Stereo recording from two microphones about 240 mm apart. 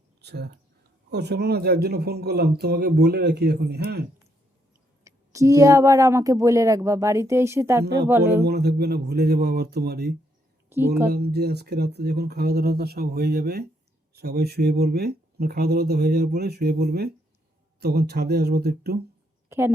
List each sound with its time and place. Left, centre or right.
0.2 s speech: right
5.0 s speech: centre
8.4 s speech: right
10.7 s speech: centre
11.1 s speech: right
19.5 s a woman's voice: centre